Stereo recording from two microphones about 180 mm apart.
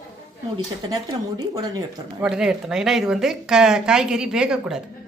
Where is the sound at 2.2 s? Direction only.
5° right (ahead or behind).